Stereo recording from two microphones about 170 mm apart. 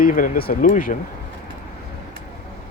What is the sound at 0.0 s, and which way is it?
Speech, 50° left (ahead or behind).